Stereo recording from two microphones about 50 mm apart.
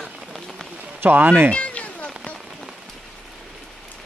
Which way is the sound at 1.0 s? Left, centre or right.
Right.